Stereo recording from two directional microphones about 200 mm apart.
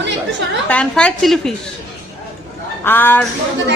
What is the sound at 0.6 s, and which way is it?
Speech, 5° left (ahead or behind).